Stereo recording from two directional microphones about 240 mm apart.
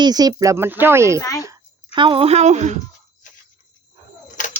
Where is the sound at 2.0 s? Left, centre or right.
Right.